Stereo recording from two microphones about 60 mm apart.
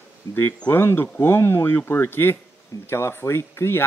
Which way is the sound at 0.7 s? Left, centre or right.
Left.